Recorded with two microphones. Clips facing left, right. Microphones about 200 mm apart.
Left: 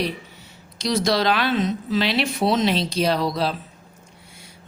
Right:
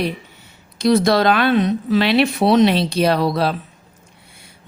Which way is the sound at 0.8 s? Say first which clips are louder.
Right 6 dB; 55° right (ahead or behind).